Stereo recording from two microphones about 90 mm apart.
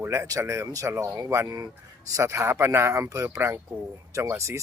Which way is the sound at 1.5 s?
45° right (ahead or behind).